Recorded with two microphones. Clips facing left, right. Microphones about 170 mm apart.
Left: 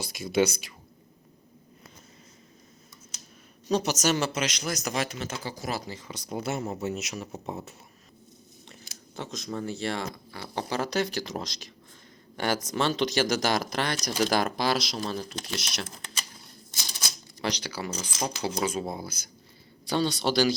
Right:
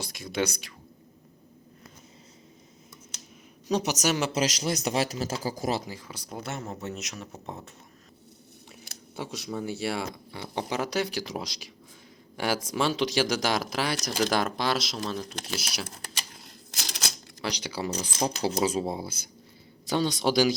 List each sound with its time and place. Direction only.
0.0 s speech: 5° left (ahead or behind)
3.7 s speech: 15° right (ahead or behind)
4.3 s speech: 35° right (ahead or behind)
5.8 s speech: 5° right (ahead or behind)
9.1 s speech: 10° right (ahead or behind)
10.3 s speech: 20° right (ahead or behind)
16.8 s a sound: 90° right
17.6 s speech: 30° right (ahead or behind)
20.0 s speech: 10° right (ahead or behind)